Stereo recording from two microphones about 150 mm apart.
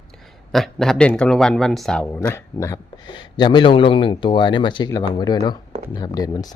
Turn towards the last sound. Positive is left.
turn(degrees=25)  # may be behind; listen again after turning